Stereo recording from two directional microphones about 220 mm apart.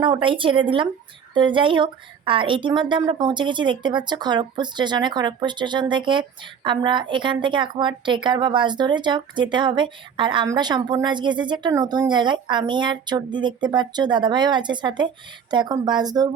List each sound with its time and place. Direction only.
0.0 s a woman's voice: 20° right (ahead or behind)